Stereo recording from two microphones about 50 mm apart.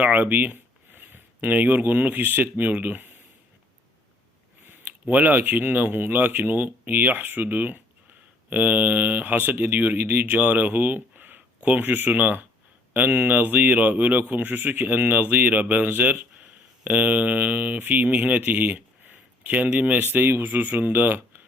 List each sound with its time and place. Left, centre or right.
0.0 s speech: right
4.6 s a man's voice: right
20.1 s a man's voice: right